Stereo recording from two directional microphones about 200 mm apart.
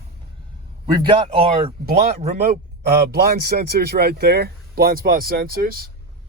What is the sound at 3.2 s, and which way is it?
Speech, 50° right (ahead or behind).